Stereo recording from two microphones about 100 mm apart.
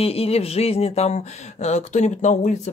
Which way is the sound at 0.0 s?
80° left.